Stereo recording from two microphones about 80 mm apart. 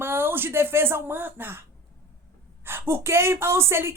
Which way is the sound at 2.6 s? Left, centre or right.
Right.